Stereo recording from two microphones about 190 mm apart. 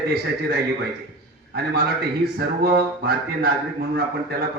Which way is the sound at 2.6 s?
55° right (ahead or behind).